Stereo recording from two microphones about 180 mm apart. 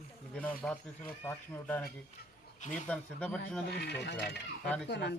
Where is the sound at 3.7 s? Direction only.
65° left (ahead or behind).